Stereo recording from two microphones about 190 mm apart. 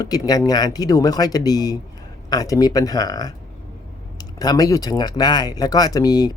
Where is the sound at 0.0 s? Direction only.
20° left (ahead or behind).